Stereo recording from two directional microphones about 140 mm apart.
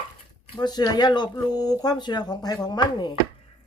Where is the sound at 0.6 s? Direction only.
30° left (ahead or behind).